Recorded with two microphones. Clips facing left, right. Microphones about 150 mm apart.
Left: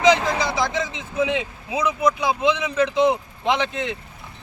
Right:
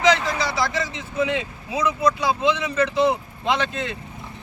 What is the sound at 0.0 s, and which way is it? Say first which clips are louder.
Speech: left 2 dB; 20° left (ahead or behind).